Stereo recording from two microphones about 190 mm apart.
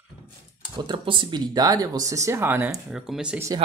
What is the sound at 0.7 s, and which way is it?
Speech, 25° right (ahead or behind).